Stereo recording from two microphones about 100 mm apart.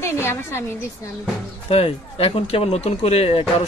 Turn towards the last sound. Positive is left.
turn(degrees=80)